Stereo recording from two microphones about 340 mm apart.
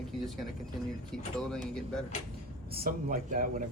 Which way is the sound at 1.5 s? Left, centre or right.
Centre.